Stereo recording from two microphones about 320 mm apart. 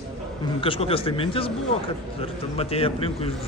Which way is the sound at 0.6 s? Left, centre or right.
Centre.